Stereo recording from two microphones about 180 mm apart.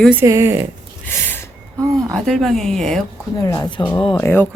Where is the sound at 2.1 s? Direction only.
5° left (ahead or behind).